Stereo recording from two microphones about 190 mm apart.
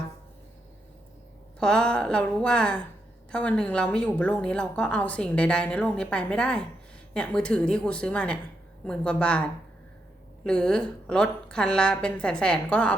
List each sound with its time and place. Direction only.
1.5 s a woman's voice: 5° left (ahead or behind)